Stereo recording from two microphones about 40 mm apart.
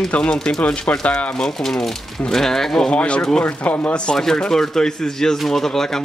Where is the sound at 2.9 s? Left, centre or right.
Left.